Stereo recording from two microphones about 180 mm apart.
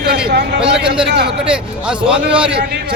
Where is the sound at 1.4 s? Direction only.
5° right (ahead or behind).